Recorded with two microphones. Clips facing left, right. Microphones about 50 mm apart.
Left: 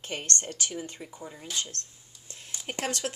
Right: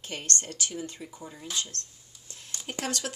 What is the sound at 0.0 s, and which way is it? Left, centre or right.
Speech, left.